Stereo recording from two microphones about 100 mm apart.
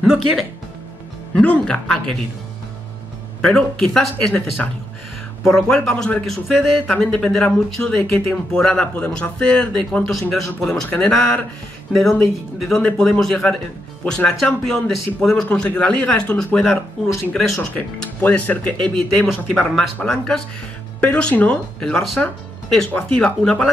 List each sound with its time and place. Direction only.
0.0 s speech: centre (ahead or behind)
1.3 s speech: 10° left (ahead or behind)
3.4 s speech: 5° left (ahead or behind)
5.5 s speech: 10° left (ahead or behind)
11.1 s speech: 20° left (ahead or behind)
11.9 s speech: 5° left (ahead or behind)
17.6 s speech: 15° left (ahead or behind)